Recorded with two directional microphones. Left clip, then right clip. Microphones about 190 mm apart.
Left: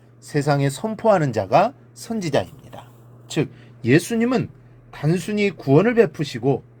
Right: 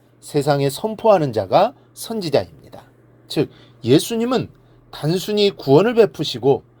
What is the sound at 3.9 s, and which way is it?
Speech, 35° right (ahead or behind).